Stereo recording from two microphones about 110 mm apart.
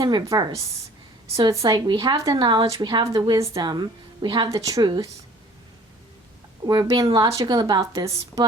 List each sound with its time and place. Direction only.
0.0 s speech: 40° right (ahead or behind)
2.0 s a woman's voice: 50° right (ahead or behind)
3.1 s speech: 35° right (ahead or behind)
3.6 s a woman's voice: 40° right (ahead or behind)
4.4 s speech: 30° right (ahead or behind)
6.7 s speech: 40° right (ahead or behind)